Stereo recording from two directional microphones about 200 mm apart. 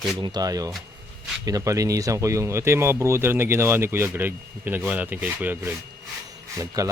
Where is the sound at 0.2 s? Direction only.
20° right (ahead or behind).